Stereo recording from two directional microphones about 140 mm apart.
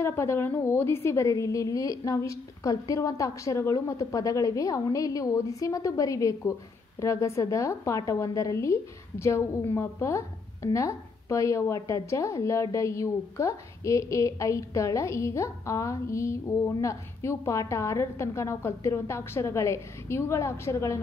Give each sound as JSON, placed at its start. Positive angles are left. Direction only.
{"t": 0.0, "sound": "a woman's voice", "side_deg": 20}